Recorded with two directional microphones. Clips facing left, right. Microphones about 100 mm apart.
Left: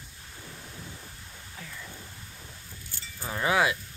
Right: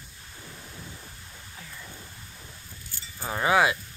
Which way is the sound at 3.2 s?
35° right (ahead or behind).